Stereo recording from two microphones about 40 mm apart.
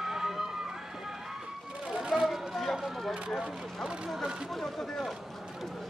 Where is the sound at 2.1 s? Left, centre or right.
Centre.